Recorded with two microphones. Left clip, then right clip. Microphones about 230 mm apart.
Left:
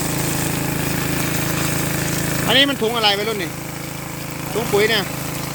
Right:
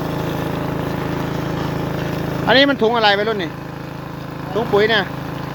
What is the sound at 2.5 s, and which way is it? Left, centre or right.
Speech, centre.